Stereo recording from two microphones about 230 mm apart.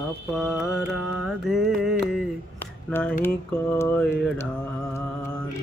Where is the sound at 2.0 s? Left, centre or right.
Centre.